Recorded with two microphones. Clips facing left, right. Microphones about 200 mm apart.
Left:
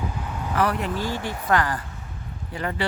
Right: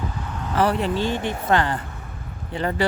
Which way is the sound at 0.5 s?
30° right (ahead or behind).